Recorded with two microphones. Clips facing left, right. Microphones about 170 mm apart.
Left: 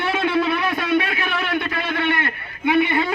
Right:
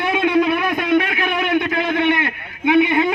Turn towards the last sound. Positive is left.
turn(degrees=-20)  # may be behind; listen again after turning